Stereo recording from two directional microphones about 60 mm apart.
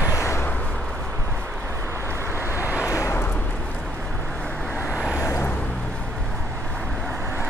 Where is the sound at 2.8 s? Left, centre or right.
Left.